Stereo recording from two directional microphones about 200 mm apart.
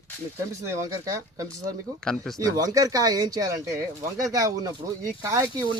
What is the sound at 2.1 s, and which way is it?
Speech, centre (ahead or behind).